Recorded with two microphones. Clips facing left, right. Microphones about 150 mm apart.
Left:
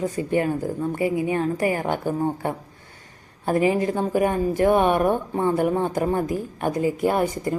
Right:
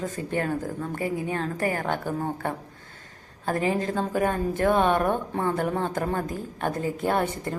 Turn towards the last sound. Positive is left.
turn(degrees=5)  # may be behind; listen again after turning